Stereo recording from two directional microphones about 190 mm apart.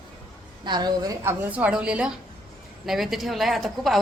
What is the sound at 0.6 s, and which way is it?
A woman's voice, 25° right (ahead or behind).